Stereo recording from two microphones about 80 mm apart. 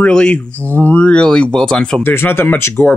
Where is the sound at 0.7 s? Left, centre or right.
Left.